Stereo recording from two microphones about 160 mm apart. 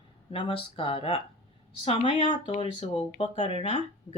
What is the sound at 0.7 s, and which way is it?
Speech, 35° left (ahead or behind).